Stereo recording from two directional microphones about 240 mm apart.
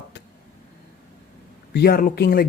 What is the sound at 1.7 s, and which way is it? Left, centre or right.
Speech, left.